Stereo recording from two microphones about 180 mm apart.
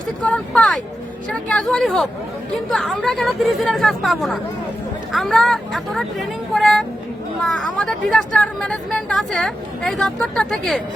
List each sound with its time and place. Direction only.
0.3 s speech: 5° left (ahead or behind)